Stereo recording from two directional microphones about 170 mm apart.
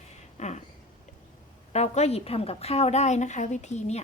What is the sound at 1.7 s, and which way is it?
Speech, 40° left (ahead or behind).